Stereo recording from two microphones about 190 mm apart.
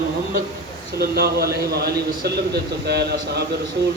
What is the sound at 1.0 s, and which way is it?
A man's voice, 55° right (ahead or behind).